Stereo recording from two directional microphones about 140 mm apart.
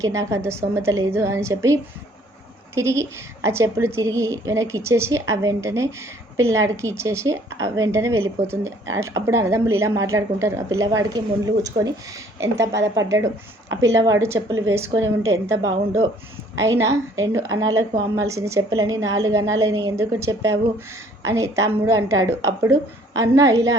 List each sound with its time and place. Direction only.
0.0 s a woman's voice: 20° right (ahead or behind)
16.6 s a woman's voice: 20° right (ahead or behind)